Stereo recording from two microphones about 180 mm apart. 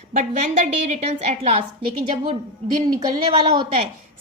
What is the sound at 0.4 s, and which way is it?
A woman's voice, 45° right (ahead or behind).